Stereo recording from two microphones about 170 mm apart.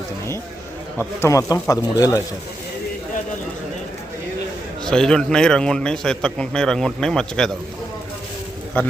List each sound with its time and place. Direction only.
0.9 s speech: 15° left (ahead or behind)
4.9 s a man's voice: 5° left (ahead or behind)
8.8 s a man's voice: 10° left (ahead or behind)